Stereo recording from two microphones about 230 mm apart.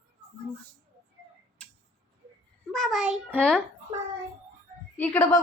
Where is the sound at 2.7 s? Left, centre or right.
Centre.